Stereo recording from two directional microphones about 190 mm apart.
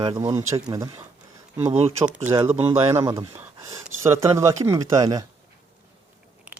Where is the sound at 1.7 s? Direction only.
30° right (ahead or behind).